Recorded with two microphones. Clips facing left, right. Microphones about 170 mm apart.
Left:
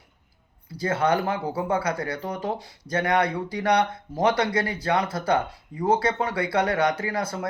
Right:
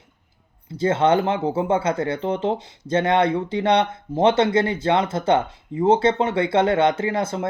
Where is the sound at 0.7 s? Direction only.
25° right (ahead or behind).